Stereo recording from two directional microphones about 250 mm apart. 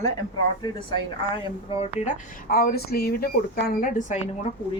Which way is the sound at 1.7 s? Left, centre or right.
Left.